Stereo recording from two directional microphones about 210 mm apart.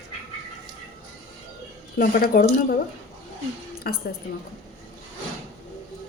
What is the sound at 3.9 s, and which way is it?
Speech, 50° left (ahead or behind).